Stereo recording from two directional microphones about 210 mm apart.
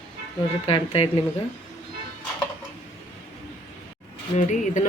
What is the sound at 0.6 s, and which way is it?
Speech, 30° left (ahead or behind).